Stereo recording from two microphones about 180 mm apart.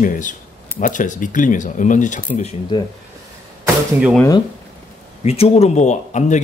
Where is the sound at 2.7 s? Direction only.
25° left (ahead or behind).